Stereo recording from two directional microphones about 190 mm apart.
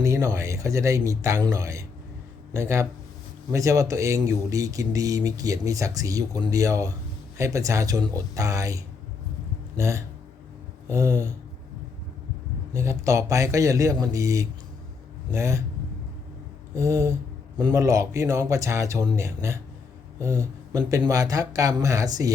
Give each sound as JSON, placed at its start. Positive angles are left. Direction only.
{"t": 0.0, "sound": "speech", "side_deg": -15}
{"t": 12.7, "sound": "speech", "side_deg": -15}
{"t": 16.7, "sound": "speech", "side_deg": -15}